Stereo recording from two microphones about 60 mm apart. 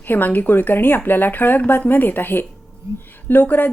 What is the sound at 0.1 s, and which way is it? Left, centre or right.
A woman's voice, left.